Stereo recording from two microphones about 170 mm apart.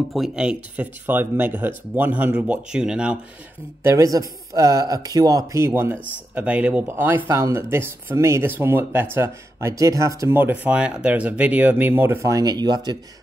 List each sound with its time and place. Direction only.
0.1 s speech: 5° right (ahead or behind)
3.8 s speech: 20° right (ahead or behind)